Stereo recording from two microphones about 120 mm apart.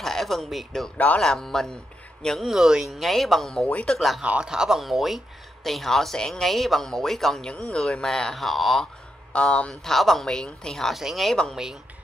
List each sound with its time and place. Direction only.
0.0 s speech: centre (ahead or behind)
0.9 s speech: 10° left (ahead or behind)